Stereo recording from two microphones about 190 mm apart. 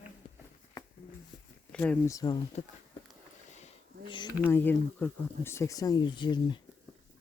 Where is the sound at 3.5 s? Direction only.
30° left (ahead or behind).